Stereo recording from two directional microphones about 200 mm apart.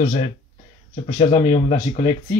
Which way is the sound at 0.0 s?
35° left (ahead or behind).